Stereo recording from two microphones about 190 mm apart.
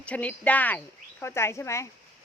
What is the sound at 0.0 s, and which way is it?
Speech, 5° left (ahead or behind).